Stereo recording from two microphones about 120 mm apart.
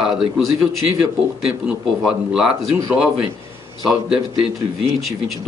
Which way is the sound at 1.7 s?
5° right (ahead or behind).